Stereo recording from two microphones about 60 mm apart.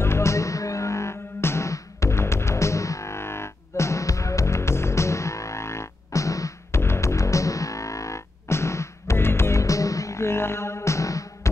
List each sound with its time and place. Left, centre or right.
0.0 s music: left
6.7 s music: left